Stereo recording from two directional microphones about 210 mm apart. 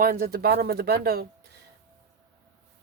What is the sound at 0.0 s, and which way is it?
A woman's voice, 45° right (ahead or behind).